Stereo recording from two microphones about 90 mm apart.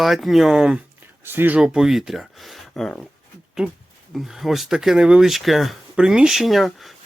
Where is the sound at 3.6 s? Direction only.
5° right (ahead or behind).